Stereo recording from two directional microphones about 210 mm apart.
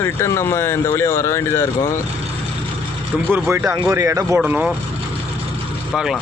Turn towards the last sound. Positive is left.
turn(degrees=0)  # may be behind; listen again after turning